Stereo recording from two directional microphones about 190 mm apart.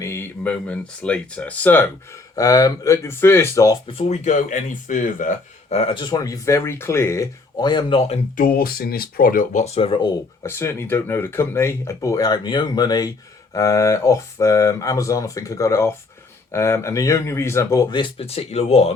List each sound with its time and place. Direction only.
0.0 s speech: 15° left (ahead or behind)
3.8 s speech: 35° left (ahead or behind)
8.4 s speech: 50° left (ahead or behind); by 18.9 s 35° left (ahead or behind)